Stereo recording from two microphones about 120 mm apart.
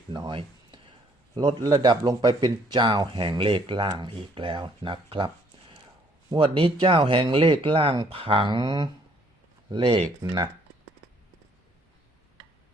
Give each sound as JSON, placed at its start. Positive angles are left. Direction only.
{"t": 0.1, "sound": "a sound", "side_deg": -40}
{"t": 1.4, "sound": "speech", "side_deg": -35}
{"t": 6.3, "sound": "speech", "side_deg": -45}
{"t": 10.2, "sound": "speech", "side_deg": -30}